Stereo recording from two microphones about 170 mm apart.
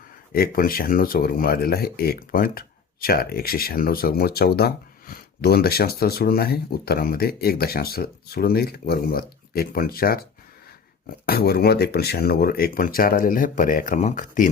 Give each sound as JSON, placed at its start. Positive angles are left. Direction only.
{"t": 0.3, "sound": "speech", "side_deg": 60}